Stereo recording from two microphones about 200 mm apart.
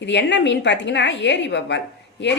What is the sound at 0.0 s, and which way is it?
A woman's voice, 60° left (ahead or behind).